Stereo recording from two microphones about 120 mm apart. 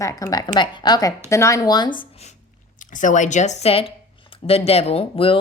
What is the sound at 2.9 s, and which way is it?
Speech, 90° left.